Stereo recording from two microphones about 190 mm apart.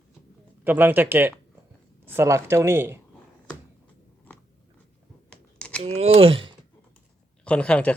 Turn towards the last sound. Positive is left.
turn(degrees=5)  # may be behind; listen again after turning